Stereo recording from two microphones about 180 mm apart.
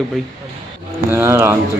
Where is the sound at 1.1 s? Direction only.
15° right (ahead or behind).